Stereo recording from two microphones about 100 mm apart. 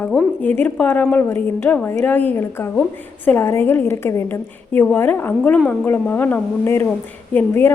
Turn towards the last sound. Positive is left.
turn(degrees=20)  # may be behind; listen again after turning